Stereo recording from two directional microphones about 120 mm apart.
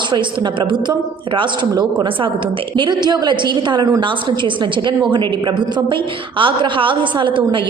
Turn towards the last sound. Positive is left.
turn(degrees=-45)  # may be behind; listen again after turning